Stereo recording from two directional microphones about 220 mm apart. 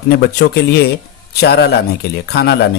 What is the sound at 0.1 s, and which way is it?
Speech, 45° left (ahead or behind).